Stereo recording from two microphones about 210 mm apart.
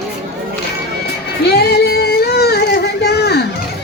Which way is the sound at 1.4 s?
50° left (ahead or behind).